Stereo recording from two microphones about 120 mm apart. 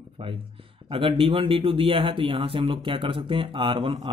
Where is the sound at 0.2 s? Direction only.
50° right (ahead or behind).